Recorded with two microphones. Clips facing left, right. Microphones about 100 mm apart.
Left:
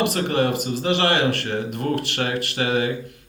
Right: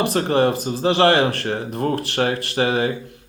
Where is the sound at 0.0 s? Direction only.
35° right (ahead or behind).